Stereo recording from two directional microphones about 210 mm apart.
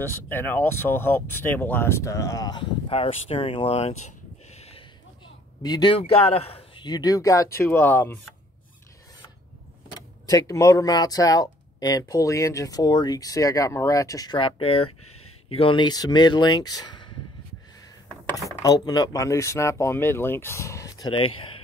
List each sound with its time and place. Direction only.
0.0 s speech: 10° left (ahead or behind); by 3.9 s 30° left (ahead or behind)
4.0 s a sound: 30° left (ahead or behind)
5.6 s a man's voice: 20° left (ahead or behind)
10.2 s a man's voice: 15° left (ahead or behind)
18.6 s speech: 15° left (ahead or behind)